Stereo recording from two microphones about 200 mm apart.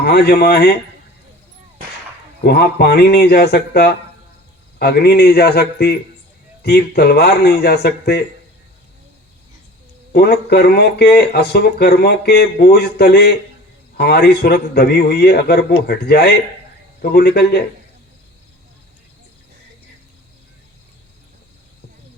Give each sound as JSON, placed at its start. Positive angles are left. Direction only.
{"t": 0.0, "sound": "speech", "side_deg": 55}
{"t": 2.4, "sound": "speech", "side_deg": 50}
{"t": 10.1, "sound": "speech", "side_deg": 55}